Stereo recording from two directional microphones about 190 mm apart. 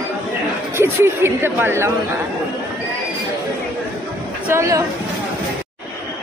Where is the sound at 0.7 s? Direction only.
10° right (ahead or behind).